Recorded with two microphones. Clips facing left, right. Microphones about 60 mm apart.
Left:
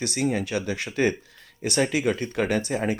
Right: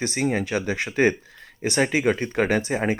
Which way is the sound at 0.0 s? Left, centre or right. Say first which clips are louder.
Right 2 dB; right.